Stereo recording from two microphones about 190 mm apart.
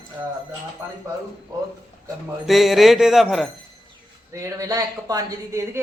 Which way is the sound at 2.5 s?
Centre (ahead or behind).